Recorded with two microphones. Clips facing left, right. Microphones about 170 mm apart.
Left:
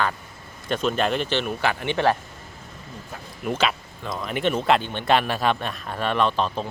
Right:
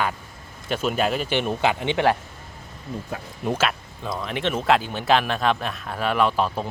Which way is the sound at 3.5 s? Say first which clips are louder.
Even; centre (ahead or behind).